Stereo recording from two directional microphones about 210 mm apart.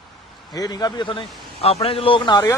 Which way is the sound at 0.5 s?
20° left (ahead or behind).